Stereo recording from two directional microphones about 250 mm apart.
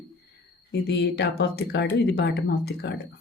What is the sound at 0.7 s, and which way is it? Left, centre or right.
A woman's voice, left.